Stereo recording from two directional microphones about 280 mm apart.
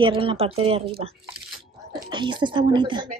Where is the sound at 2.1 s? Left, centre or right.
Centre.